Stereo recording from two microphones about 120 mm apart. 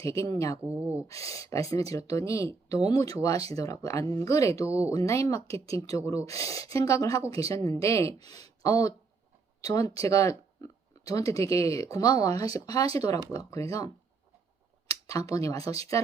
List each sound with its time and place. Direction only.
0.2 s speech: 25° left (ahead or behind)
0.7 s speech: 15° right (ahead or behind)
1.0 s speech: 25° left (ahead or behind)